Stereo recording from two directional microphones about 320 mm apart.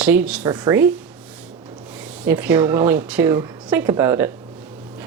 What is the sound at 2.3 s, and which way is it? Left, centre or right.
Speech, centre.